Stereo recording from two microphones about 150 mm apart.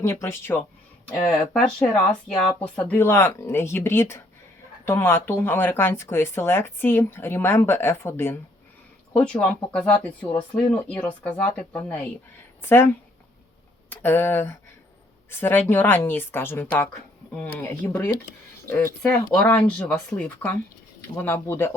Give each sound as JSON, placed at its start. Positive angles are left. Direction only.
{"t": 0.0, "sound": "speech", "side_deg": 20}
{"t": 1.3, "sound": "speech", "side_deg": 5}
{"t": 13.9, "sound": "speech", "side_deg": 15}